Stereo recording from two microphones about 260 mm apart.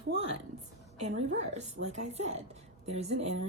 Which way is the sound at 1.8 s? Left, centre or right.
Right.